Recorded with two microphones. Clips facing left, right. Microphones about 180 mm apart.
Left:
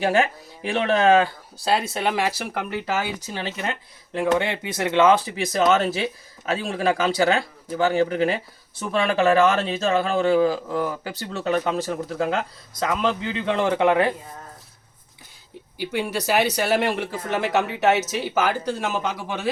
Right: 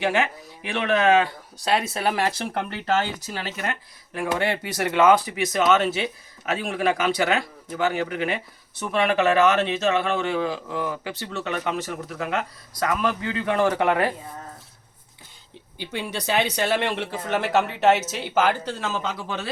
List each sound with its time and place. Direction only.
0.0 s speech: 35° left (ahead or behind)
15.8 s speech: 10° left (ahead or behind)